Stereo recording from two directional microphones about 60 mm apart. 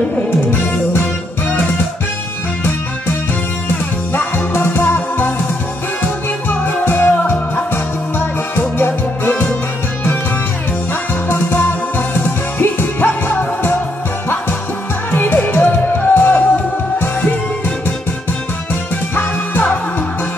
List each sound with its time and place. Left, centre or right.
4.1 s music: left
6.5 s music: left
10.9 s music: left
15.0 s music: left
19.1 s music: left